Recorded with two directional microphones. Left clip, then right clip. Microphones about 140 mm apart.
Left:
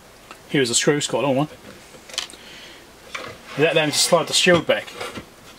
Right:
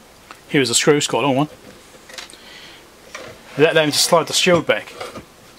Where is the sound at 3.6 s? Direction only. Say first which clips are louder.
Right 4 dB; 20° right (ahead or behind).